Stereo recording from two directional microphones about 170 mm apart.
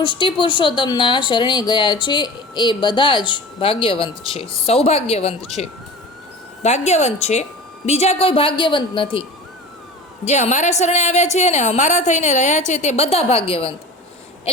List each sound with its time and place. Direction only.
0.2 s a woman's voice: 30° left (ahead or behind)
10.2 s a woman's voice: 40° left (ahead or behind)